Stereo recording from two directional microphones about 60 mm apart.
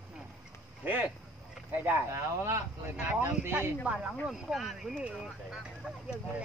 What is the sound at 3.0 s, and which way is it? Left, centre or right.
Speech, right.